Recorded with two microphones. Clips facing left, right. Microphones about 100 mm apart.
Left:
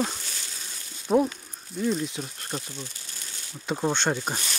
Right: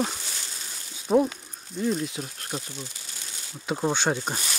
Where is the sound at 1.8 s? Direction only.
Centre (ahead or behind).